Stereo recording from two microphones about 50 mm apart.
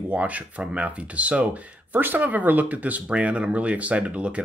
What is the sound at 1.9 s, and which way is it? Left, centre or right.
Speech, right.